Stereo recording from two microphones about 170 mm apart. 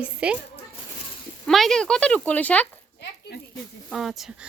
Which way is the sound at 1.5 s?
Centre (ahead or behind).